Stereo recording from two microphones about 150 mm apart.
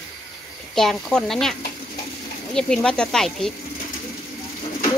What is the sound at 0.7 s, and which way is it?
Speech, 5° left (ahead or behind).